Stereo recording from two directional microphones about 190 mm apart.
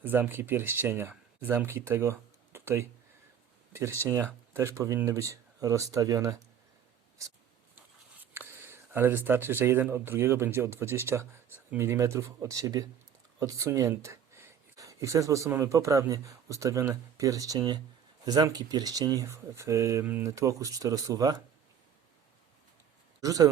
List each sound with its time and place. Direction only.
0.0 s speech: 10° right (ahead or behind)
8.2 s speech: 10° right (ahead or behind)
23.2 s speech: 20° right (ahead or behind)